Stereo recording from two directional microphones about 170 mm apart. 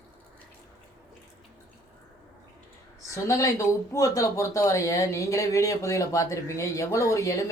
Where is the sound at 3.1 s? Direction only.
20° left (ahead or behind).